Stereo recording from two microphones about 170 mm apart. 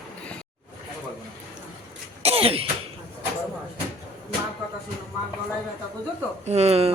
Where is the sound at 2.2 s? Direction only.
35° right (ahead or behind).